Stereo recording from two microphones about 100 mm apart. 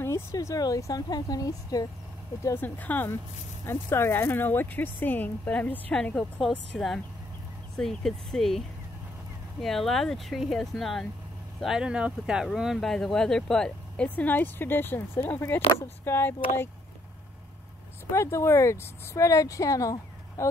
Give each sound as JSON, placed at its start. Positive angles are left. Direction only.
{"t": 0.0, "sound": "speech", "side_deg": 30}
{"t": 2.4, "sound": "speech", "side_deg": 20}
{"t": 18.1, "sound": "speech", "side_deg": 25}